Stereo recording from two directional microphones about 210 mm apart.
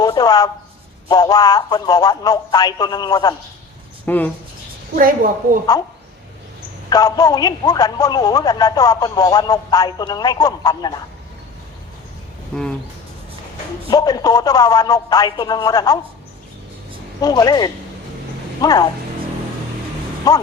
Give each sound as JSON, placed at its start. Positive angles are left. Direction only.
{"t": 0.0, "sound": "speech", "side_deg": 20}
{"t": 4.9, "sound": "a woman's voice", "side_deg": -40}
{"t": 5.7, "sound": "speech", "side_deg": 15}
{"t": 6.9, "sound": "speech", "side_deg": 15}
{"t": 12.5, "sound": "speech", "side_deg": 5}
{"t": 13.9, "sound": "speech", "side_deg": 20}
{"t": 17.2, "sound": "speech", "side_deg": 20}
{"t": 20.3, "sound": "speech", "side_deg": 20}